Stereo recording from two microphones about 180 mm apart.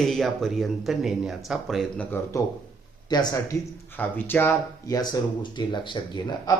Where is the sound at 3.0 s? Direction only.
20° left (ahead or behind).